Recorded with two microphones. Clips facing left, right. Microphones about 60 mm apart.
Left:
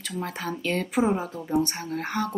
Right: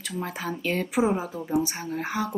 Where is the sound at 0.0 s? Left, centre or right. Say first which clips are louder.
Even; centre.